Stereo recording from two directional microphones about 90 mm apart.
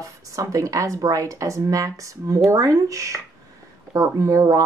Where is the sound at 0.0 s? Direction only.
40° right (ahead or behind).